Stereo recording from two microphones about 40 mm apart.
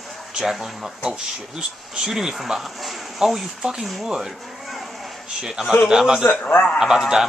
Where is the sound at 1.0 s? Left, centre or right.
Centre.